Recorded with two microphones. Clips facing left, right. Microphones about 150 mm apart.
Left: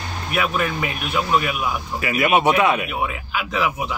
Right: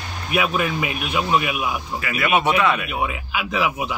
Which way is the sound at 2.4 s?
15° left (ahead or behind).